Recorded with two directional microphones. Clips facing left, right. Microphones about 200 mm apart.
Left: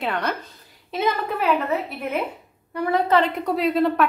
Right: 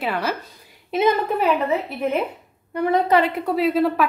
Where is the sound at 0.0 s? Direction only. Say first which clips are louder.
Right 1 dB; 5° right (ahead or behind).